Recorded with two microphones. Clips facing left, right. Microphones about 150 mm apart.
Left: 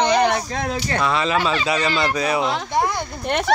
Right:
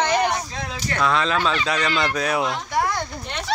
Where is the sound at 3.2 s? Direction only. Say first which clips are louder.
Left 9 dB; 55° left (ahead or behind).